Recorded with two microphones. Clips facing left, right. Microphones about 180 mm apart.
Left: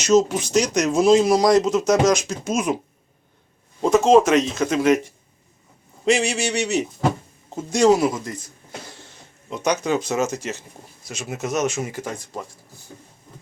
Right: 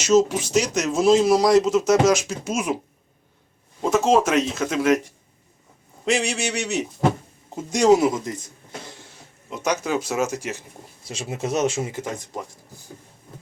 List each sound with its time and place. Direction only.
0.0 s speech: 5° right (ahead or behind)
3.8 s speech: 5° right (ahead or behind)
6.1 s speech: centre (ahead or behind)
7.5 s speech: 15° right (ahead or behind)
9.5 s speech: 5° right (ahead or behind)
11.0 s speech: 30° right (ahead or behind)